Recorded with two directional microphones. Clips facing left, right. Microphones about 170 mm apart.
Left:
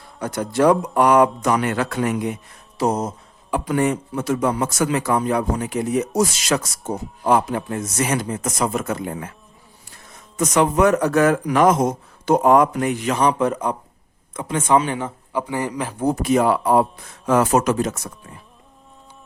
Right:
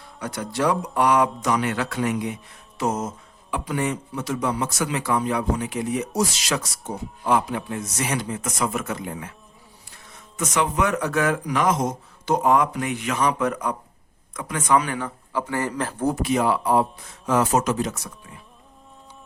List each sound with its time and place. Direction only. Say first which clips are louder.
0.2 s speech: left 6 dB; 45° left (ahead or behind)
2.7 s a sound: left 4 dB; 35° left (ahead or behind)
3.7 s speech: left 6 dB; 50° left (ahead or behind)
10.3 s speech: left 6 dB; 40° left (ahead or behind); by 16.1 s 10° left (ahead or behind)
16.1 s speech: left 6 dB; 45° left (ahead or behind)